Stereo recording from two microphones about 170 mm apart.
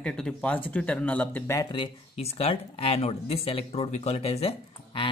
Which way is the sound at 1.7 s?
35° left (ahead or behind).